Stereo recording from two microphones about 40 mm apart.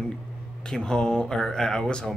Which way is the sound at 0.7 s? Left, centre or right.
Centre.